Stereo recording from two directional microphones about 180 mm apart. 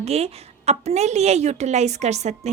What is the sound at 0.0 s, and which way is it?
Speech, 35° right (ahead or behind).